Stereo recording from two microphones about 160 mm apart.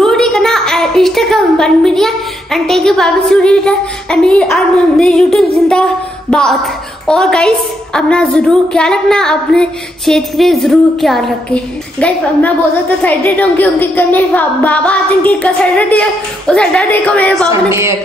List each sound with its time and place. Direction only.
0.0 s a woman's voice: centre (ahead or behind)
17.5 s speech: 15° right (ahead or behind)